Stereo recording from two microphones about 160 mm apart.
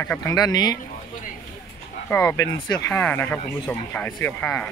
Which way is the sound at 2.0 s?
15° left (ahead or behind).